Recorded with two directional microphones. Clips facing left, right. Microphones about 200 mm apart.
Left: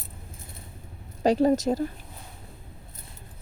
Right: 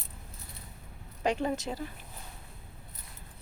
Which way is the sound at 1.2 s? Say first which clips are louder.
Left 9 dB; 35° left (ahead or behind).